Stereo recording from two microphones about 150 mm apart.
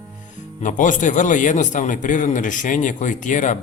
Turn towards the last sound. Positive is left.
turn(degrees=55)  # may be behind; listen again after turning